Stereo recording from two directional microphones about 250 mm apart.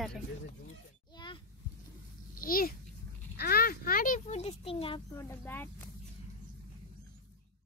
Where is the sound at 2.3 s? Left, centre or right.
Left.